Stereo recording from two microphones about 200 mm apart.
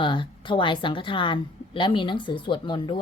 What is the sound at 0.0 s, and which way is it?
A woman's voice, 25° left (ahead or behind).